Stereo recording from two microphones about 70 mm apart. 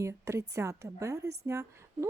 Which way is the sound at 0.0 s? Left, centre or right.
Right.